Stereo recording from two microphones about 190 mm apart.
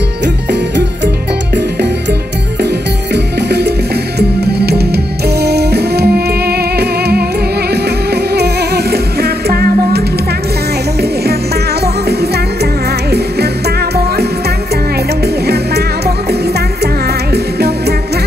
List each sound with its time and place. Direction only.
3.3 s music: 60° right (ahead or behind)
11.8 s music: 55° right (ahead or behind)
15.4 s music: 55° right (ahead or behind)